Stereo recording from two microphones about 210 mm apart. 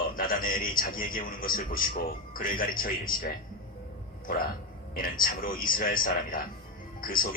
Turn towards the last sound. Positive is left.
turn(degrees=40)  # may be behind; listen again after turning